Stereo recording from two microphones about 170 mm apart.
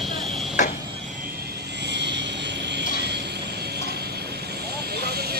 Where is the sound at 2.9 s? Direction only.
80° right.